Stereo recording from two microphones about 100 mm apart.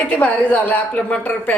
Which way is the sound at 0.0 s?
15° left (ahead or behind).